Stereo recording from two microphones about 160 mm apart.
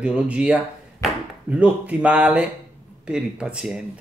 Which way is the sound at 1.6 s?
10° right (ahead or behind).